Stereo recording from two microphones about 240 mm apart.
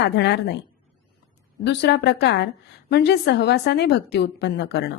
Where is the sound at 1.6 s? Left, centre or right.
Left.